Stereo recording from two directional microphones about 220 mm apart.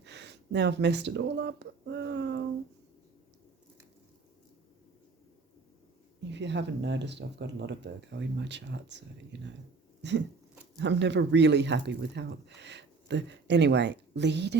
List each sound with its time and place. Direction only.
0.0 s speech: 50° right (ahead or behind)
6.3 s speech: 55° right (ahead or behind)
10.0 s a sound: 55° right (ahead or behind)
10.8 s speech: 55° right (ahead or behind)